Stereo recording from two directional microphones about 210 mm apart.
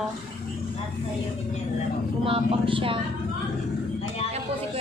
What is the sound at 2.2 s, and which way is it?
Speech, 25° right (ahead or behind).